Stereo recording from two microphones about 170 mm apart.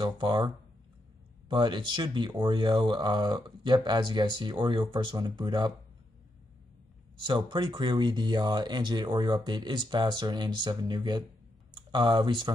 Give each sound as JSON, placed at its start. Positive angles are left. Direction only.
{"t": 0.0, "sound": "speech", "side_deg": -30}
{"t": 7.2, "sound": "speech", "side_deg": -30}